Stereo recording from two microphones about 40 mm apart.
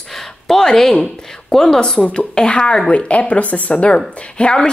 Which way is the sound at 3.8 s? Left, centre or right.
Left.